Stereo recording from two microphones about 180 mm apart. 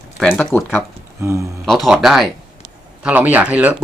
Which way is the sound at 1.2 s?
15° right (ahead or behind).